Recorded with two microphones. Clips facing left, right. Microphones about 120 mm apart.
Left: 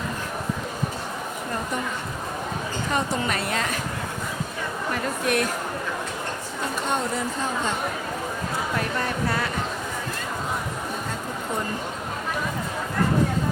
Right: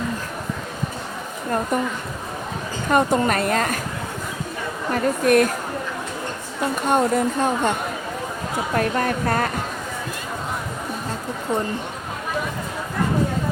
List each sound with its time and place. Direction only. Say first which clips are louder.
2.9 s speech: right 8 dB; 50° right (ahead or behind)
4.9 s speech: right 8 dB; 45° right (ahead or behind)
6.8 s speech: right 9 dB; 50° right (ahead or behind)